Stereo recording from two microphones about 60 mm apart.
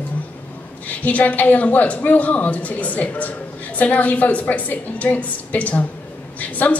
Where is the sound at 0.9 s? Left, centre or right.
Left.